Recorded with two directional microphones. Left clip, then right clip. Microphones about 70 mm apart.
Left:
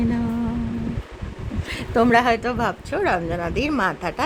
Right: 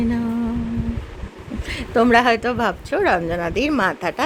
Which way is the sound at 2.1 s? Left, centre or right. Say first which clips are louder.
Right 3 dB; right.